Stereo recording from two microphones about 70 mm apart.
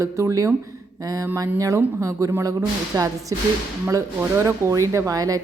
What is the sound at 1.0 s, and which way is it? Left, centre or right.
A woman's voice, right.